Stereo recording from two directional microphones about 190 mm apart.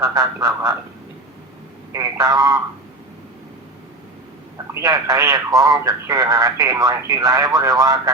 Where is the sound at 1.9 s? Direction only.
15° right (ahead or behind).